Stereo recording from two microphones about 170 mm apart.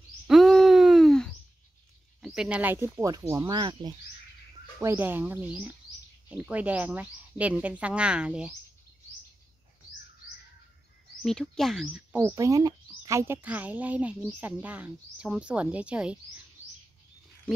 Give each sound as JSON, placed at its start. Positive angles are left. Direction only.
{"t": 0.3, "sound": "a sound", "side_deg": 0}
{"t": 2.2, "sound": "a woman's voice", "side_deg": -5}
{"t": 4.7, "sound": "a woman's voice", "side_deg": -15}
{"t": 11.2, "sound": "speech", "side_deg": 0}
{"t": 12.2, "sound": "a woman's voice", "side_deg": -15}